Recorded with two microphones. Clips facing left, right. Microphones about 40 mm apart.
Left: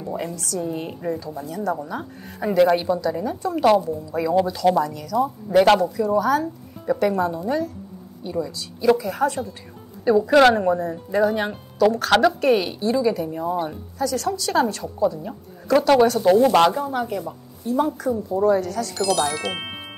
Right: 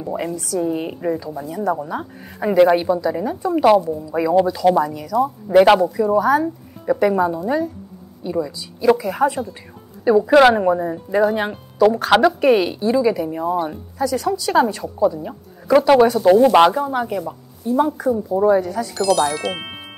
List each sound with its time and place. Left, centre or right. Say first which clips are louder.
0.0 s a woman's voice: right 4 dB; centre
18.9 s speech: right 5 dB; centre